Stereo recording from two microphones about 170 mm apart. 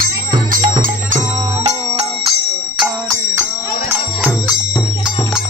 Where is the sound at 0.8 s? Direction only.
45° right (ahead or behind).